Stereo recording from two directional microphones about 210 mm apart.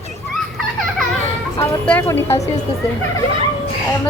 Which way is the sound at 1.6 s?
10° left (ahead or behind).